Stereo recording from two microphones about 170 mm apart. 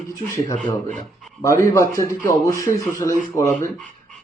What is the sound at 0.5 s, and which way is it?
Speech, 45° right (ahead or behind).